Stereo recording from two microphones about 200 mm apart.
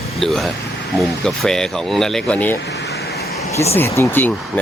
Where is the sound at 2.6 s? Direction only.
55° left (ahead or behind).